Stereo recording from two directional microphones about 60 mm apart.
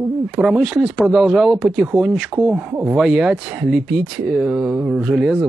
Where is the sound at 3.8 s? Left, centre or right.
Centre.